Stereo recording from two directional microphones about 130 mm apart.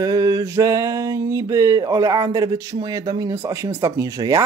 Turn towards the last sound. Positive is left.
turn(degrees=-25)  # may be behind; listen again after turning